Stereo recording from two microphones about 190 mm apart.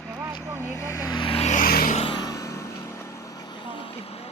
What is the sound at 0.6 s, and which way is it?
Vehicle, 15° left (ahead or behind).